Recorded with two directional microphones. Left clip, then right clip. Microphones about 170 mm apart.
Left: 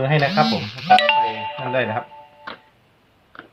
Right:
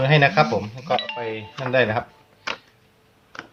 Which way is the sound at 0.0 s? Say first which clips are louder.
Right 1 dB; 35° right (ahead or behind).